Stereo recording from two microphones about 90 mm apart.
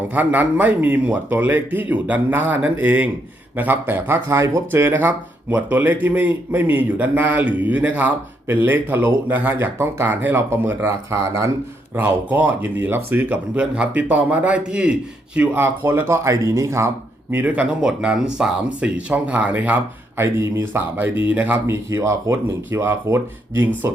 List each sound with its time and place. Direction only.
0.1 s speech: 20° right (ahead or behind); by 11.5 s 35° right (ahead or behind)
11.9 s speech: 20° right (ahead or behind)
15.4 s speech: 25° right (ahead or behind)
17.3 s speech: 15° right (ahead or behind)
20.2 s speech: 35° right (ahead or behind)
21.2 s speech: 20° right (ahead or behind)
21.7 s speech: 35° right (ahead or behind)